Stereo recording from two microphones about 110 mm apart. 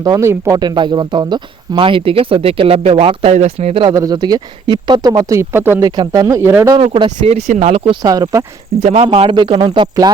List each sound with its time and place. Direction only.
0.0 s speech: 30° right (ahead or behind)
0.6 s speech: 40° right (ahead or behind)
3.3 s speech: 85° right
3.9 s speech: 35° right (ahead or behind); by 5.8 s 20° right (ahead or behind)
5.8 s speech: 40° right (ahead or behind)
6.7 s speech: 55° right (ahead or behind)
7.2 s speech: 85° right
8.0 s speech: 35° right (ahead or behind)
8.8 s speech: 75° right (ahead or behind)
9.3 s speech: 45° right (ahead or behind)